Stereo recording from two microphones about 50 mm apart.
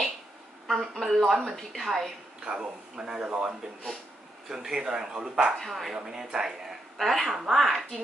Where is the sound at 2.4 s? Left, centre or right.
Centre.